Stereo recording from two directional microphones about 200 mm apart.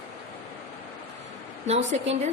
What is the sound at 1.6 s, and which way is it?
Speech, 35° right (ahead or behind).